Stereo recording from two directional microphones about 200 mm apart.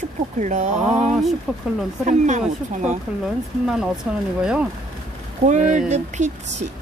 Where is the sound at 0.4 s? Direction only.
35° right (ahead or behind).